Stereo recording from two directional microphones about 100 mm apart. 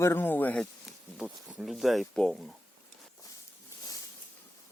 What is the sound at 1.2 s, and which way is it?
Speech, 5° right (ahead or behind).